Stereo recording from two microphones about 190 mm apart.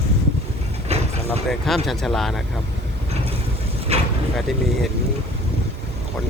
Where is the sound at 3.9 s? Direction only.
30° right (ahead or behind).